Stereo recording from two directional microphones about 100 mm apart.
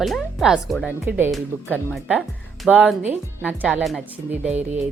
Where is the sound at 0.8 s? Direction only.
20° right (ahead or behind).